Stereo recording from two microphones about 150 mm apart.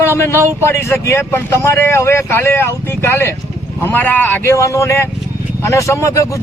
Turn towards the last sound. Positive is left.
turn(degrees=20)  # may be behind; listen again after turning